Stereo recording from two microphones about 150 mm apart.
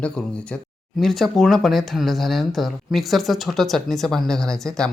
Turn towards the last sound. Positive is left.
turn(degrees=5)  # may be behind; listen again after turning